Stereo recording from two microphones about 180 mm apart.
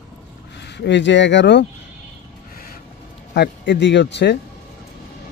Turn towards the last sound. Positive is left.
turn(degrees=70)  # may be behind; listen again after turning